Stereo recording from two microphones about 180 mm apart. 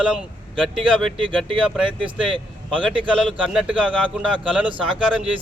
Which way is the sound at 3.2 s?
Centre (ahead or behind).